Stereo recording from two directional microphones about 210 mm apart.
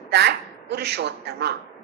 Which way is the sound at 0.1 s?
50° right (ahead or behind).